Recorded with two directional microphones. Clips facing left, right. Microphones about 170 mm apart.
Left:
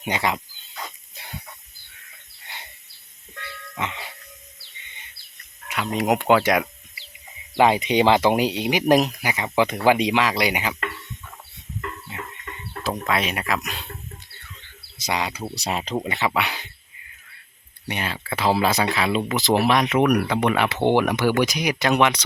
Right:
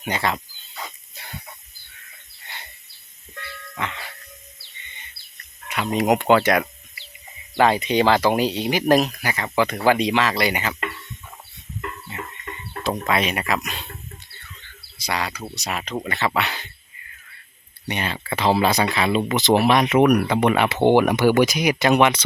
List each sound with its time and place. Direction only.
0.0 s speech: 15° left (ahead or behind)
1.2 s chicken: 15° left (ahead or behind)
3.8 s music: 15° left (ahead or behind)
5.6 s a sound: centre (ahead or behind)
6.0 s speech: centre (ahead or behind)
12.8 s speech: centre (ahead or behind)
14.9 s speech: 20° left (ahead or behind)
16.0 s speech: 15° left (ahead or behind)
17.8 s speech: 5° left (ahead or behind)